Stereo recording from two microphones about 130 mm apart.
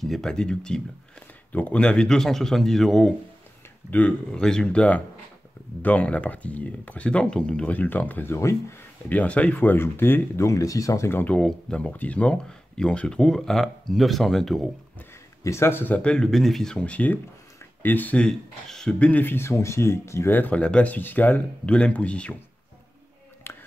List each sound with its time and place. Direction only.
0.0 s speech: 5° left (ahead or behind)
15.0 s speech: 20° left (ahead or behind)
23.5 s whispering: 20° left (ahead or behind)